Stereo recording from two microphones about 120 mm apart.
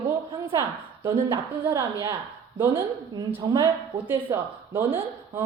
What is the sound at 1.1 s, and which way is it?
Speech, 45° right (ahead or behind).